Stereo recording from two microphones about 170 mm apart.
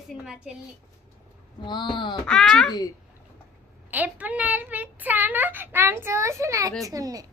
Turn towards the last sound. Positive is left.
turn(degrees=-20)  # may be behind; listen again after turning